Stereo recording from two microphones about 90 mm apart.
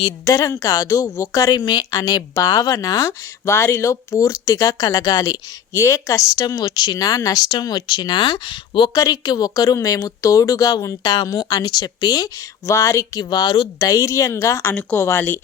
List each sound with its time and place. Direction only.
0.3 s speech: 40° left (ahead or behind)
1.6 s speech: 55° left (ahead or behind); by 6.4 s 35° left (ahead or behind)
6.4 s speech: 45° left (ahead or behind); by 8.9 s 65° left (ahead or behind)
9.0 s speech: 45° left (ahead or behind)
13.7 s speech: 40° left (ahead or behind)
14.7 s speech: 20° left (ahead or behind)